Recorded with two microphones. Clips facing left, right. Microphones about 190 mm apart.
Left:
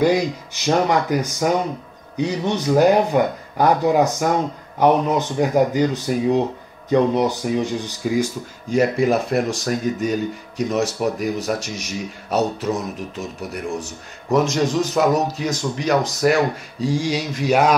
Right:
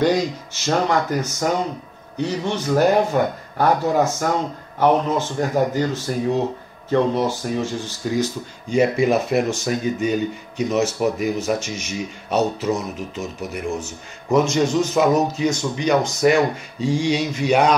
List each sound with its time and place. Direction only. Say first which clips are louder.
0.7 s speech: left 2 dB; 10° left (ahead or behind)